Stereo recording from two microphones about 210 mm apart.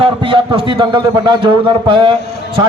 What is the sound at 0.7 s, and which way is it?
A man's voice, 20° right (ahead or behind).